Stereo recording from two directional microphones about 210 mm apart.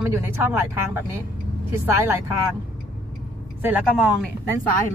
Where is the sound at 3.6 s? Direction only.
5° right (ahead or behind).